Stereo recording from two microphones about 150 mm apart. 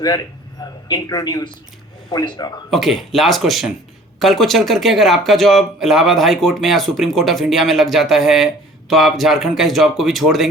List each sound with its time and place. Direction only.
0.6 s a man's voice: 25° left (ahead or behind)
2.6 s speech: centre (ahead or behind)